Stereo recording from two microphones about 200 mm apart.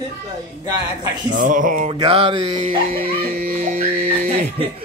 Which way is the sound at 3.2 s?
50° right (ahead or behind).